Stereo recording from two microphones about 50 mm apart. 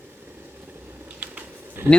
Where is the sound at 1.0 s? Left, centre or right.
Right.